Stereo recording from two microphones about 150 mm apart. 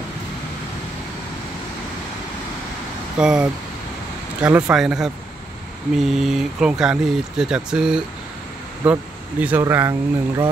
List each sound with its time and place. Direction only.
3.2 s speech: 5° right (ahead or behind)